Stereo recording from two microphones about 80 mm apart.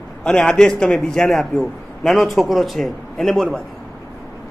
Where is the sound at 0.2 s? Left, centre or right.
Centre.